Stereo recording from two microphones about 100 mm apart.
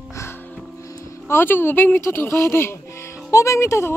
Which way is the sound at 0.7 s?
30° left (ahead or behind).